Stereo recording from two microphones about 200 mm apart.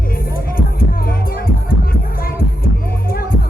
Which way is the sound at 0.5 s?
45° left (ahead or behind).